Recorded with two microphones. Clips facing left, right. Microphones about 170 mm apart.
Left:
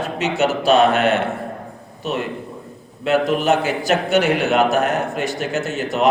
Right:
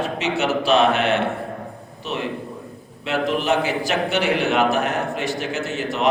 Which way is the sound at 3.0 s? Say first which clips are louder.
Left 5 dB; 45° left (ahead or behind).